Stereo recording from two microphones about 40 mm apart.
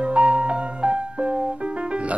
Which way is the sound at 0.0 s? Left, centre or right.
Right.